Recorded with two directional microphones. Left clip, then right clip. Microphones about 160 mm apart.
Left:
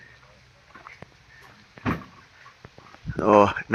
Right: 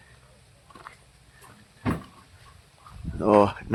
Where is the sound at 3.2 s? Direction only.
10° right (ahead or behind).